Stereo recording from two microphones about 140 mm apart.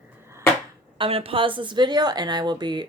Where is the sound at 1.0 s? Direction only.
45° right (ahead or behind).